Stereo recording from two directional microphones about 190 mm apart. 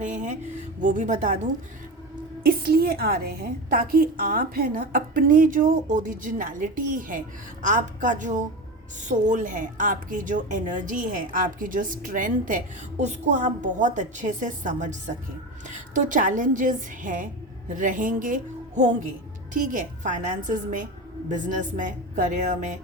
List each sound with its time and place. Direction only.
0.0 s speech: 40° right (ahead or behind)
2.4 s a woman's voice: 50° right (ahead or behind)